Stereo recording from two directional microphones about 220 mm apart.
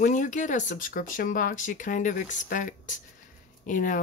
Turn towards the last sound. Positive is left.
turn(degrees=35)  # may be behind; listen again after turning